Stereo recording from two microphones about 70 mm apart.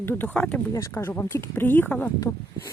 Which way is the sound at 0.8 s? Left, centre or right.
Left.